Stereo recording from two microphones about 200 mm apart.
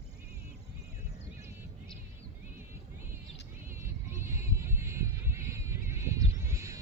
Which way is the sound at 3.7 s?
10° right (ahead or behind).